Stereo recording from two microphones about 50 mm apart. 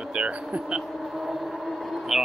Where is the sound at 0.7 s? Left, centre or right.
Centre.